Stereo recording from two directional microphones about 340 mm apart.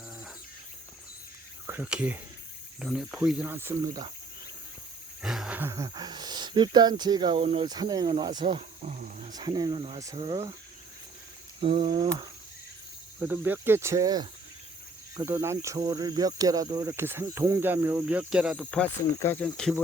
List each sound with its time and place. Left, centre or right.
1.6 s speech: centre
5.2 s speech: centre; by 9.3 s right
9.3 s speech: centre
11.6 s speech: centre
13.1 s speech: centre